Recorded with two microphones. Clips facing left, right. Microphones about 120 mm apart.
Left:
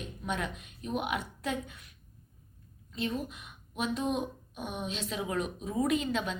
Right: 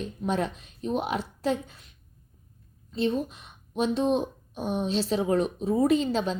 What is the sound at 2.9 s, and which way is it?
Speech, 30° right (ahead or behind).